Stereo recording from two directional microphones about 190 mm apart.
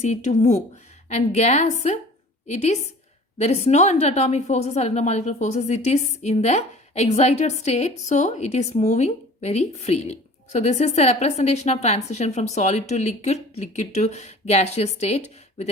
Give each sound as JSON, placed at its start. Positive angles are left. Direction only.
{"t": 0.0, "sound": "a woman's voice", "side_deg": 35}
{"t": 3.3, "sound": "a woman's voice", "side_deg": 35}